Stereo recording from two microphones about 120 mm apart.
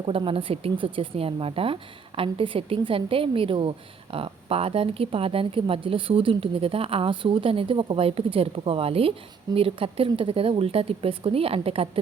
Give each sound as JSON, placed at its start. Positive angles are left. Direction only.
{"t": 0.0, "sound": "speech", "side_deg": -50}